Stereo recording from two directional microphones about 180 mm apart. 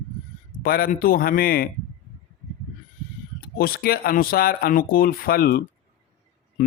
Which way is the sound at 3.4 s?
55° left (ahead or behind).